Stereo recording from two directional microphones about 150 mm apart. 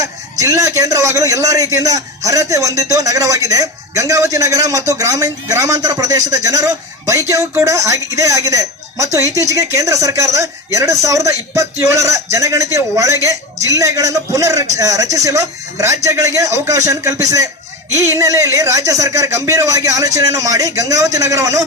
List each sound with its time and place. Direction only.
0.0 s a man's voice: 20° right (ahead or behind)